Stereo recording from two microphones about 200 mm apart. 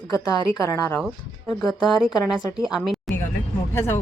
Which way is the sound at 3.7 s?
10° left (ahead or behind).